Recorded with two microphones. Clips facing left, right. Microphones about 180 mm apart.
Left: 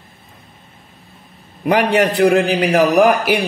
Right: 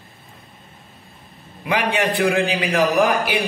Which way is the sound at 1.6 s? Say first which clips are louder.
Left 7 dB; 45° left (ahead or behind).